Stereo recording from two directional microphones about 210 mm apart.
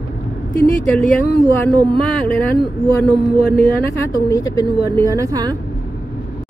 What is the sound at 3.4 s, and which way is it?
Speech, 45° left (ahead or behind).